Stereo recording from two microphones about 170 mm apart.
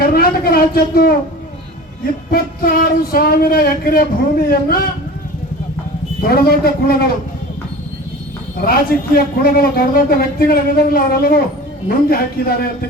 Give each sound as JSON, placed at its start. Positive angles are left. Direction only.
{"t": 0.0, "sound": "speech", "side_deg": 60}
{"t": 2.3, "sound": "a man's voice", "side_deg": 60}
{"t": 6.2, "sound": "a man's voice", "side_deg": 60}
{"t": 8.6, "sound": "a man's voice", "side_deg": 60}